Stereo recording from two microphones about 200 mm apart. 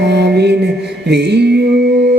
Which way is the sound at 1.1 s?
60° right (ahead or behind).